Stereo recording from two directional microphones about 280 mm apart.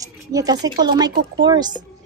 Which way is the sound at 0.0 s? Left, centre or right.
Centre.